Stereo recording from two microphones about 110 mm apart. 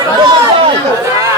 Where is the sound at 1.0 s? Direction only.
25° right (ahead or behind).